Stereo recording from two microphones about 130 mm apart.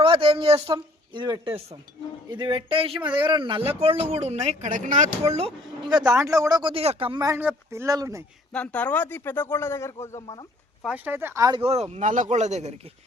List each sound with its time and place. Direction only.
0.0 s speech: 45° right (ahead or behind); by 5.1 s 70° right (ahead or behind)
5.8 s speech: 35° right (ahead or behind)
7.3 s speech: 20° right (ahead or behind)
8.5 s a man's voice: 10° left (ahead or behind)
10.8 s speech: 10° right (ahead or behind)
11.6 s speech: 55° right (ahead or behind)